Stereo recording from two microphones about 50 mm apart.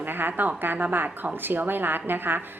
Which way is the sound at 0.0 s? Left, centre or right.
Right.